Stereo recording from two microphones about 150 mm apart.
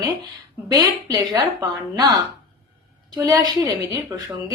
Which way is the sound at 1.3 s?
25° right (ahead or behind).